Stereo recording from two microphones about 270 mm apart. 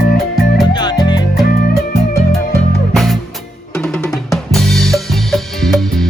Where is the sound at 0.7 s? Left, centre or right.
Centre.